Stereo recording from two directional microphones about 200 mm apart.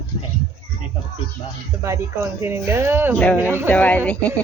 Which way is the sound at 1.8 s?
15° right (ahead or behind).